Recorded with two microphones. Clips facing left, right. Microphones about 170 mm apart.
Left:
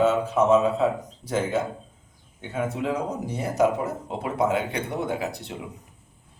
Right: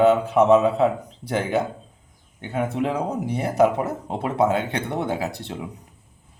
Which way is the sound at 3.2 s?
65° right (ahead or behind).